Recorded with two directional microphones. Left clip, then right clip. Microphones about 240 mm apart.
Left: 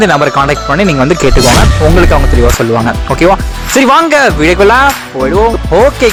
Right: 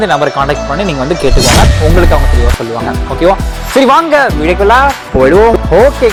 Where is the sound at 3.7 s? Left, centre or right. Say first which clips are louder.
Even; left.